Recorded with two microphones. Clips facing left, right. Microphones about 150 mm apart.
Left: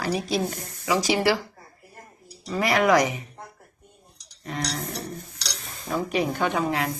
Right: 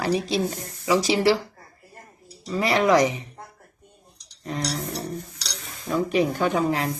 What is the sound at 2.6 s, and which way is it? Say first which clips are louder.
Speech: right 1 dB; 30° right (ahead or behind).